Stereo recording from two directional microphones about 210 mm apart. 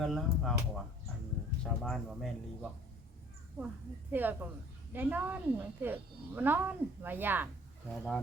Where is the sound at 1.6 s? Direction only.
Centre (ahead or behind).